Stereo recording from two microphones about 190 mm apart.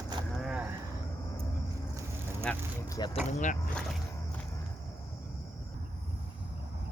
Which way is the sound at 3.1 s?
40° left (ahead or behind).